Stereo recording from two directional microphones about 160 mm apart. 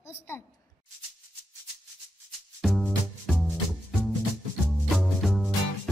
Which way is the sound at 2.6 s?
Centre (ahead or behind).